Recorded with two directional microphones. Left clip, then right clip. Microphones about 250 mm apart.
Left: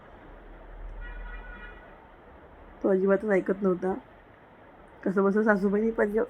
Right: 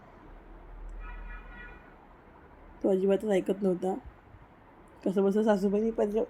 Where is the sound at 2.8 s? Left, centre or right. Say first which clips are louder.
Left 2 dB; centre.